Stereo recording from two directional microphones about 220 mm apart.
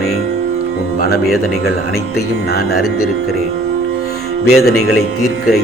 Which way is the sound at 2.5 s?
45° left (ahead or behind).